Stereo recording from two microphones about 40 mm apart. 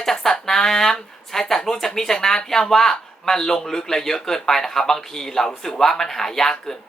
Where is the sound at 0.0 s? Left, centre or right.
Centre.